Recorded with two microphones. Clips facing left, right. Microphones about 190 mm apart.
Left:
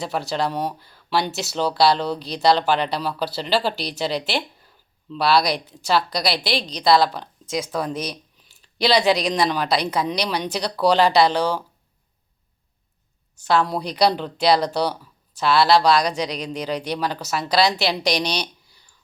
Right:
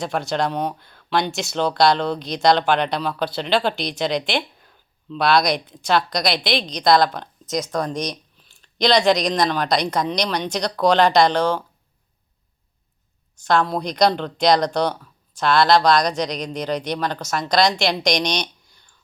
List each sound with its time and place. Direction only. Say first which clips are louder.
0.0 s speech: right 2 dB; 5° left (ahead or behind)
13.3 s speech: right 1 dB; 5° left (ahead or behind)